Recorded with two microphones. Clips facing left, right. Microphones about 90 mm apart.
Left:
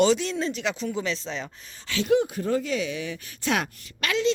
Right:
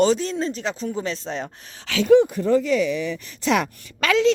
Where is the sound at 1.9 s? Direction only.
90° right.